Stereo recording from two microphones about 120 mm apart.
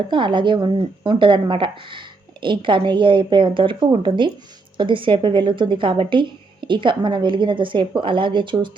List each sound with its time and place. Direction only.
0.1 s speech: 40° right (ahead or behind)